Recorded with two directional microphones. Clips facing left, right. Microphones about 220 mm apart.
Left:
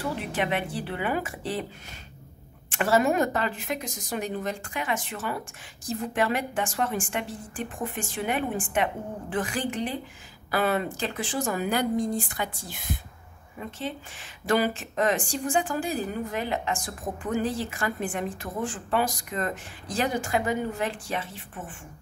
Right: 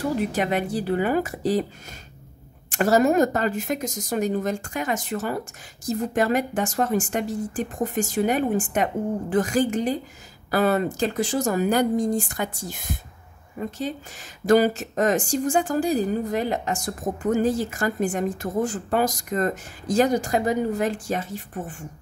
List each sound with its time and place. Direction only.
0.0 s a woman's voice: 40° right (ahead or behind)
2.7 s a woman's voice: 40° right (ahead or behind)